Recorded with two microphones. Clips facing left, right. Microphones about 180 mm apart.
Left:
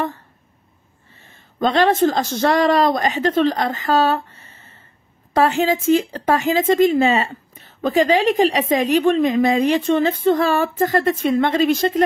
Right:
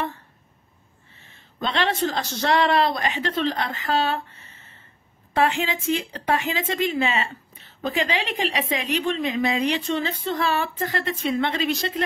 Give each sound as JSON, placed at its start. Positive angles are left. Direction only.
{"t": 1.2, "sound": "a woman's voice", "side_deg": 45}